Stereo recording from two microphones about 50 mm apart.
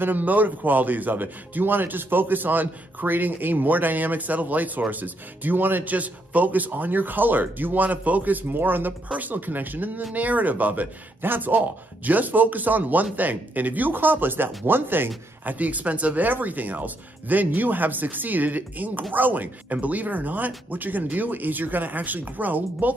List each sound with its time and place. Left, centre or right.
0.0 s a man's voice: right